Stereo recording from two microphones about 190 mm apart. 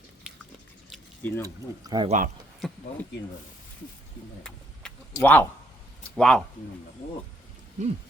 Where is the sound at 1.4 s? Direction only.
20° right (ahead or behind).